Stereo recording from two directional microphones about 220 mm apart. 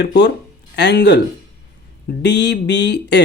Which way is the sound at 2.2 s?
50° left (ahead or behind).